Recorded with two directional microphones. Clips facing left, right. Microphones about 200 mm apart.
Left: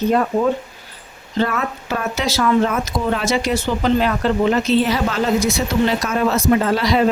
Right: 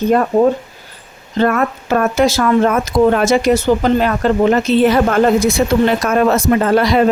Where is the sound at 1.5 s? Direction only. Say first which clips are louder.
Right 7 dB; 55° right (ahead or behind).